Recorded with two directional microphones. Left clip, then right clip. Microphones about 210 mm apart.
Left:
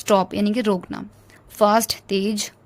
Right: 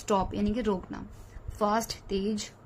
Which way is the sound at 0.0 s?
50° left (ahead or behind).